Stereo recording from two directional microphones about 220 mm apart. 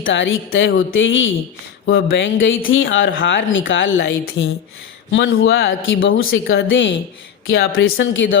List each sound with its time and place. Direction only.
0.0 s speech: 60° left (ahead or behind)